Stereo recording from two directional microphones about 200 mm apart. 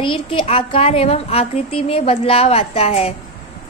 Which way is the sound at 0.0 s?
25° left (ahead or behind).